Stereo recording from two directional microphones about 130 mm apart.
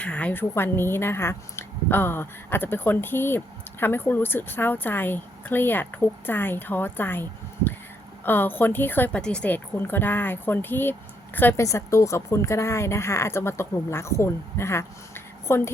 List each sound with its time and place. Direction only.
0.0 s speech: 10° left (ahead or behind)